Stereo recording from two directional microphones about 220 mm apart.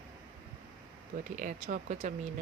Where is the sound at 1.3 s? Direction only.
35° right (ahead or behind).